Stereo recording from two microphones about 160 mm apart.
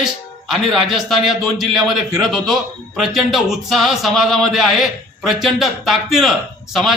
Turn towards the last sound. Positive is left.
turn(degrees=0)  # may be behind; listen again after turning